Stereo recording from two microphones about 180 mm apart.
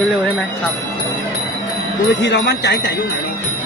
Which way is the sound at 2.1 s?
80° left.